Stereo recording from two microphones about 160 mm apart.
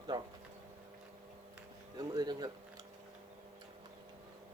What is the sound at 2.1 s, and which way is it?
Speech, 25° right (ahead or behind).